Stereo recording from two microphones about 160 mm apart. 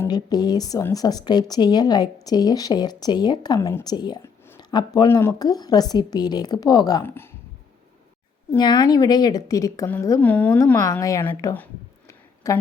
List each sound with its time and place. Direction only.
0.1 s a woman's voice: 25° left (ahead or behind)
4.5 s a sound: 25° left (ahead or behind)
5.0 s a woman's voice: 20° left (ahead or behind)
7.0 s speech: 15° left (ahead or behind)
8.5 s a woman's voice: 25° left (ahead or behind); by 10.8 s 10° left (ahead or behind)
10.8 s a woman's voice: 20° left (ahead or behind)
11.5 s a sound: 15° left (ahead or behind)